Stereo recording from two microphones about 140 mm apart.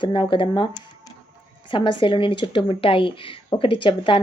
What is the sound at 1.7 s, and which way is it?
A woman's voice, 35° left (ahead or behind).